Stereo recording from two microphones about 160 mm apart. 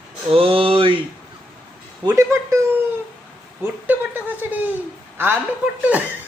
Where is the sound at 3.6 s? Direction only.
10° right (ahead or behind).